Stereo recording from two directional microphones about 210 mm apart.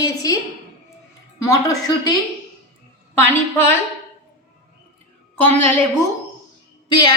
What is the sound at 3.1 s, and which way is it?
Speech, 10° left (ahead or behind).